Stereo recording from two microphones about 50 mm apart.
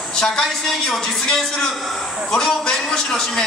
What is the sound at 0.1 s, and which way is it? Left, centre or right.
A man's voice, centre.